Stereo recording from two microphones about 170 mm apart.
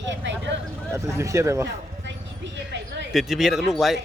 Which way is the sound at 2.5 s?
90° right.